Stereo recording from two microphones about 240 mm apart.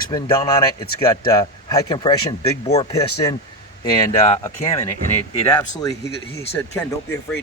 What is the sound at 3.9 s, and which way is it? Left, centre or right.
Speech, centre.